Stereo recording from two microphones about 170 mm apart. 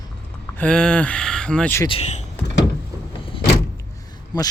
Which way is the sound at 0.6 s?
5° left (ahead or behind).